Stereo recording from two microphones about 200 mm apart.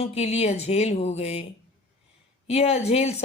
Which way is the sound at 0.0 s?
30° left (ahead or behind).